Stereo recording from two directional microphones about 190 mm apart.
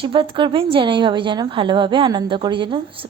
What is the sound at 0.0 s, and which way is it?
A woman's voice, 25° right (ahead or behind).